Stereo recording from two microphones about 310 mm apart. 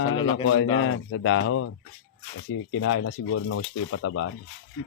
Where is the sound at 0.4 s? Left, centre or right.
Left.